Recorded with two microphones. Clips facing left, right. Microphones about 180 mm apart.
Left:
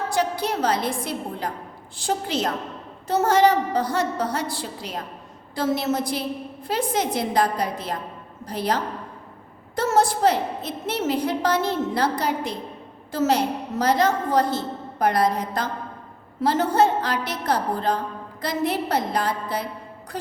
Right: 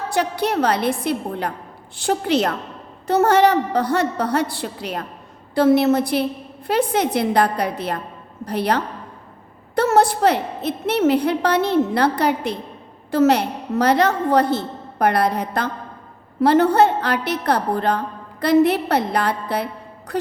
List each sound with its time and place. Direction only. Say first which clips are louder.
0.1 s a woman's voice: right 5 dB; 65° right (ahead or behind)